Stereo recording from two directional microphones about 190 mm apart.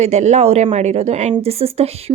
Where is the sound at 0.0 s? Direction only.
35° right (ahead or behind).